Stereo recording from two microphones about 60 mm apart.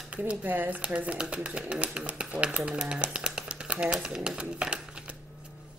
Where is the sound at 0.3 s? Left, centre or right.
Right.